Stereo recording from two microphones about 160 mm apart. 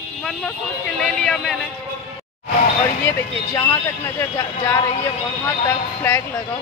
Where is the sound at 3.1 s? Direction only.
20° left (ahead or behind).